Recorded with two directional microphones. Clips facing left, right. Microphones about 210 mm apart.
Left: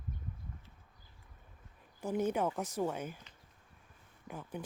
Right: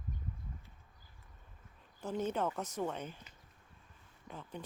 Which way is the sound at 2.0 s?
10° left (ahead or behind).